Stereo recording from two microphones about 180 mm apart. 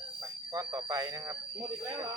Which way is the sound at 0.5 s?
20° right (ahead or behind).